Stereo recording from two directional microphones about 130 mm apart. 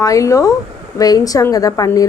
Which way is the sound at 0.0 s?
25° left (ahead or behind).